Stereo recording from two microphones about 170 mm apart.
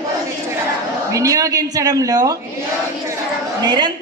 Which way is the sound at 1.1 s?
20° right (ahead or behind).